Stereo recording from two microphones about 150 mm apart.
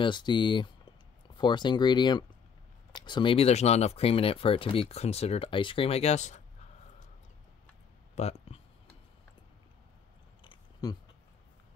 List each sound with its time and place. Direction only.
0.0 s speech: 30° left (ahead or behind); by 6.4 s 50° left (ahead or behind)
8.2 s speech: 45° left (ahead or behind)
10.4 s biting: 30° left (ahead or behind)